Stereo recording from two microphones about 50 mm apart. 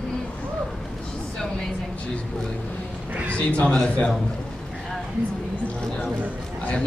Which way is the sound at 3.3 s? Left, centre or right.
Left.